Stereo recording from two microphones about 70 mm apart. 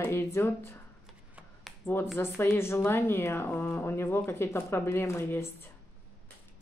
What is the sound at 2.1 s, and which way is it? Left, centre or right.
A woman's voice, left.